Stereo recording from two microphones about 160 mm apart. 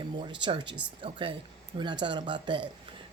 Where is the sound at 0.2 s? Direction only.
30° right (ahead or behind).